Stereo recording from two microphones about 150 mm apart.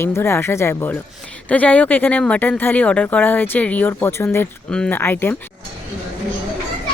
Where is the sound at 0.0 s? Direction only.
15° left (ahead or behind).